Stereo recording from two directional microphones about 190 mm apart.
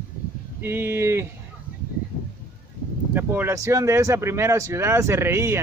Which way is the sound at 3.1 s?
10° right (ahead or behind).